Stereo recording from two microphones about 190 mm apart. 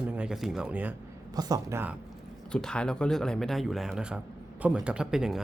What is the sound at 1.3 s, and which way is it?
Speech, 20° right (ahead or behind).